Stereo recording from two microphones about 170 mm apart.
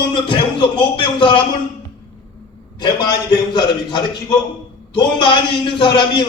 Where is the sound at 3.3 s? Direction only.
25° left (ahead or behind).